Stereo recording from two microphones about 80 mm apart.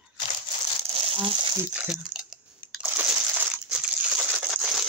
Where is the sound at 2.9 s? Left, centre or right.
Right.